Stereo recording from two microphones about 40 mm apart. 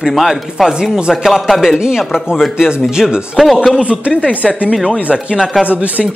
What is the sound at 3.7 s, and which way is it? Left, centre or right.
Music, right.